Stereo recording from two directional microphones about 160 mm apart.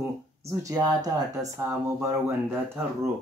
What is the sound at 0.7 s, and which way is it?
Speech, 20° right (ahead or behind).